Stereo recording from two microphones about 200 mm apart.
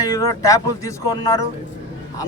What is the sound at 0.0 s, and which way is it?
A man's voice, 15° left (ahead or behind).